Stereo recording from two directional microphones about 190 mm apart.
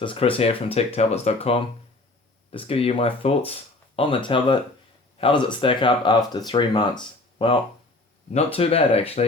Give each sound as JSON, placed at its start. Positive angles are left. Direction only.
{"t": 0.0, "sound": "speech", "side_deg": 30}
{"t": 8.5, "sound": "speech", "side_deg": 30}